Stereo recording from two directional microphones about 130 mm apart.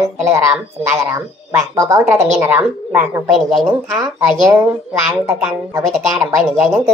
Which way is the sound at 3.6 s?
25° right (ahead or behind).